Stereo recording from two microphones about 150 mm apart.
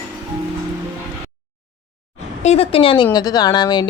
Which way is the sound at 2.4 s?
45° left (ahead or behind).